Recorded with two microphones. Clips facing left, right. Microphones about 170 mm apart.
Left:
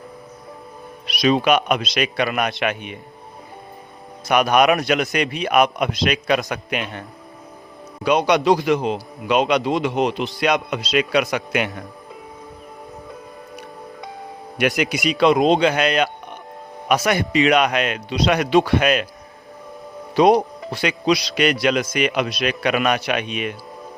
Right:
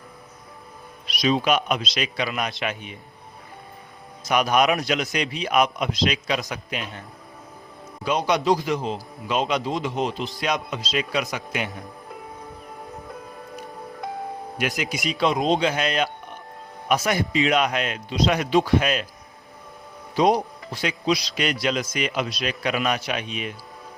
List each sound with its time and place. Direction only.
1.0 s a man's voice: 70° left (ahead or behind)
4.3 s a man's voice: 65° left (ahead or behind)
8.0 s a man's voice: 70° left (ahead or behind)
14.6 s a man's voice: 70° left (ahead or behind)
20.1 s a man's voice: 70° left (ahead or behind)